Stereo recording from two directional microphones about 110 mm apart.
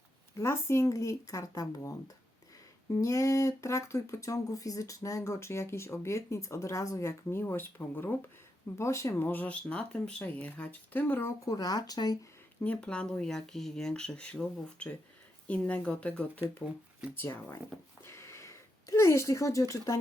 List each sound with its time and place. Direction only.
0.3 s speech: 25° left (ahead or behind)
11.5 s speech: 35° left (ahead or behind)
12.6 s speech: 10° left (ahead or behind)
18.0 s a sound: 25° left (ahead or behind)